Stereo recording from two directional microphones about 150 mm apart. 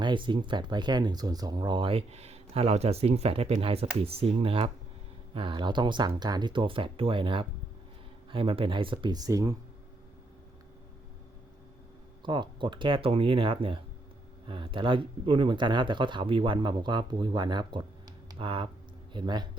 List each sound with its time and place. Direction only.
0.0 s speech: 30° right (ahead or behind)
12.2 s speech: 30° right (ahead or behind)